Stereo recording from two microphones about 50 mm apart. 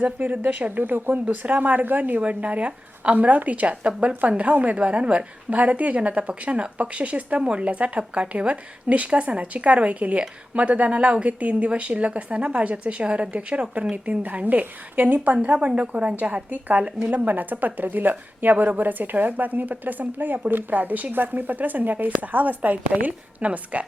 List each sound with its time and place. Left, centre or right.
0.0 s speech: right
0.8 s speech: right